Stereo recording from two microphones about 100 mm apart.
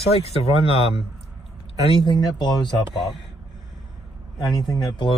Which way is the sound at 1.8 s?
60° left (ahead or behind).